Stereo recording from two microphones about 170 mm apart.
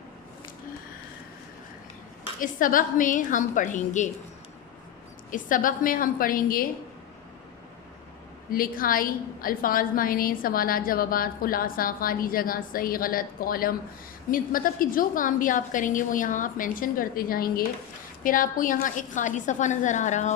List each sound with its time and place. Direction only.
2.4 s a woman's voice: 55° left (ahead or behind)
5.3 s a woman's voice: 50° left (ahead or behind)
8.4 s a woman's voice: 55° left (ahead or behind)